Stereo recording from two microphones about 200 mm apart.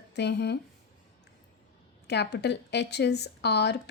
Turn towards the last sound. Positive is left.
turn(degrees=55)  # may be behind; listen again after turning